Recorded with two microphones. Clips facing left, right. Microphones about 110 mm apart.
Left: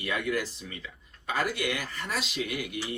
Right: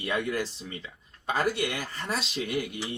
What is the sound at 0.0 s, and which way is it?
Speech, 30° right (ahead or behind).